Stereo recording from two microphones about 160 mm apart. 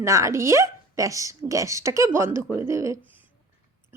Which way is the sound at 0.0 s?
20° right (ahead or behind).